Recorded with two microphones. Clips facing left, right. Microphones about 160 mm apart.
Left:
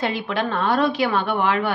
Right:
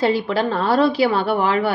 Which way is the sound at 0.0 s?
35° right (ahead or behind).